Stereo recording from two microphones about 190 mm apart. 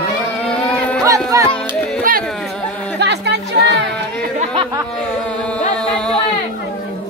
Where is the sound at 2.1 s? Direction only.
45° right (ahead or behind).